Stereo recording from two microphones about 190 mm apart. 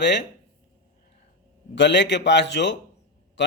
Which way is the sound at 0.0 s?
65° left (ahead or behind).